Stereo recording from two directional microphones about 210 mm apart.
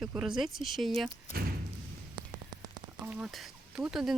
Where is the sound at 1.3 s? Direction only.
45° right (ahead or behind).